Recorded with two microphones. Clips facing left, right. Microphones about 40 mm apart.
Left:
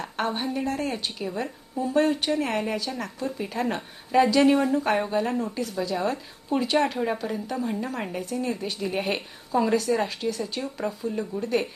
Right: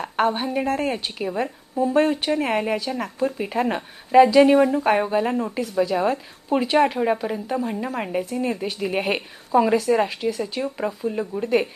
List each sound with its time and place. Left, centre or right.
0.0 s a woman's voice: centre
0.7 s speech: right